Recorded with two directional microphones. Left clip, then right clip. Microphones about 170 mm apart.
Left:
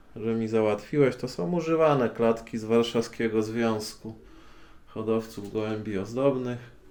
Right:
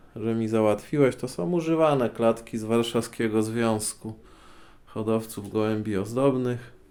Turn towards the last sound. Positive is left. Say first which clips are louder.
# right 2 dB
turn(degrees=-65)  # may be behind; listen again after turning